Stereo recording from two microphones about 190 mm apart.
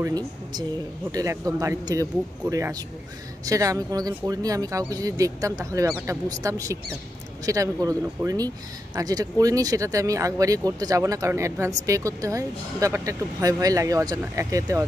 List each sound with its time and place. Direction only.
0.0 s speech: 20° right (ahead or behind)